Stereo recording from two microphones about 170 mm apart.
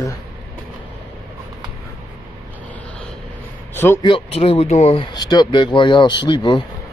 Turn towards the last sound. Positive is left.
turn(degrees=25)  # may be behind; listen again after turning